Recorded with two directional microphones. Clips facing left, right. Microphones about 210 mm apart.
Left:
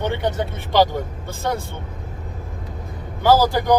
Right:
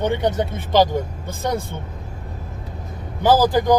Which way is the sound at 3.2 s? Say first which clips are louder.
Even; 15° right (ahead or behind).